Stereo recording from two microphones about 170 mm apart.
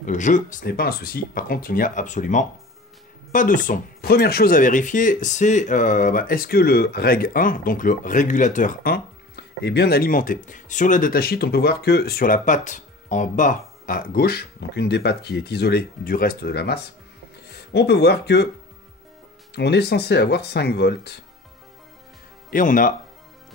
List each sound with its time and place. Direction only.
0.0 s speech: 45° left (ahead or behind); by 18.5 s 75° left (ahead or behind)
19.5 s speech: 80° left
22.5 s speech: 50° left (ahead or behind)